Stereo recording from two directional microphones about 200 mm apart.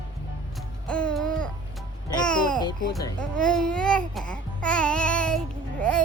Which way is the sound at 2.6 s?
20° left (ahead or behind).